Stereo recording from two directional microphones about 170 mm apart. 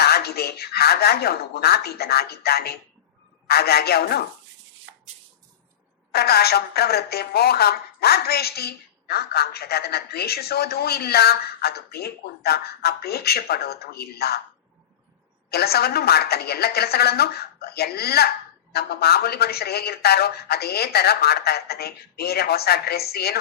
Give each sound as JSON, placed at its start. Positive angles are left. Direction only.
{"t": 0.0, "sound": "a woman's voice", "side_deg": 70}
{"t": 4.9, "sound": "a sound", "side_deg": -90}
{"t": 6.1, "sound": "a woman's voice", "side_deg": 70}
{"t": 15.4, "sound": "a woman's voice", "side_deg": 70}